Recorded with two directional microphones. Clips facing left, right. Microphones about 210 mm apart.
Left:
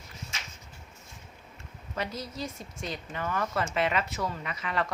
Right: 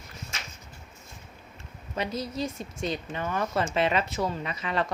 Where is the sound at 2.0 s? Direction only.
20° right (ahead or behind).